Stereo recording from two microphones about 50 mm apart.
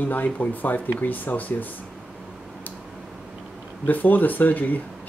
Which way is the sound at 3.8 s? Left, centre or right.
Left.